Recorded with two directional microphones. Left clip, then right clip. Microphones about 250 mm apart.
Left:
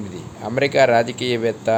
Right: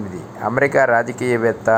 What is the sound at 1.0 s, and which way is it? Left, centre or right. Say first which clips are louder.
Speech: right 3 dB; right.